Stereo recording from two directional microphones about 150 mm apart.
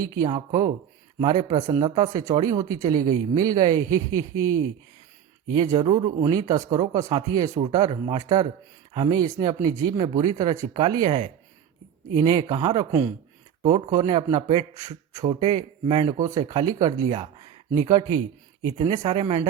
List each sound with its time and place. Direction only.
0.0 s a man's voice: 25° right (ahead or behind)
17.1 s a man's voice: 35° right (ahead or behind)